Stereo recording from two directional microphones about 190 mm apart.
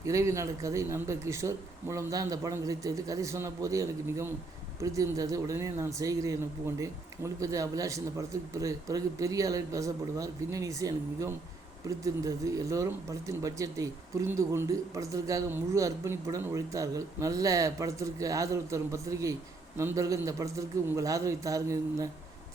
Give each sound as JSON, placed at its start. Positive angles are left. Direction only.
{"t": 0.0, "sound": "speech", "side_deg": -15}